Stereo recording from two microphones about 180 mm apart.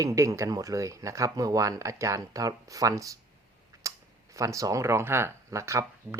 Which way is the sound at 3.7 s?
15° right (ahead or behind).